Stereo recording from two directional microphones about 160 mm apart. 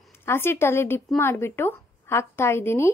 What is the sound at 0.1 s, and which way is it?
Speech, 15° left (ahead or behind).